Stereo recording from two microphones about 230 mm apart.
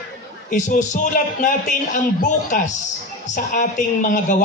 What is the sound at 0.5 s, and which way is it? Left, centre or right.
Speech, left.